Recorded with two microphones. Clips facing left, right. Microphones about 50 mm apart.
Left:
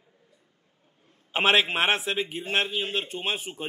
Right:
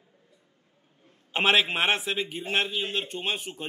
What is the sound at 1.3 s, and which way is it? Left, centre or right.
A man's voice, centre.